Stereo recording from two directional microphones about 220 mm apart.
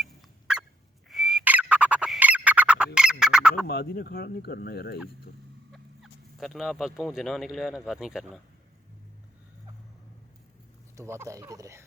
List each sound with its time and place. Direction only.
0.0 s turkey: 5° right (ahead or behind)
1.0 s bird: centre (ahead or behind)
3.7 s speech: 45° left (ahead or behind)
5.7 s speech: centre (ahead or behind)
10.9 s speech: 10° right (ahead or behind)